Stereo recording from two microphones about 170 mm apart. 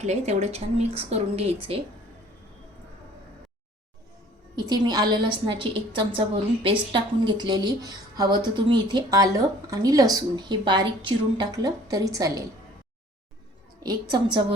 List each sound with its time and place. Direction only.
0.0 s a woman's voice: 40° right (ahead or behind)
4.5 s speech: 25° right (ahead or behind)
13.8 s speech: 25° right (ahead or behind)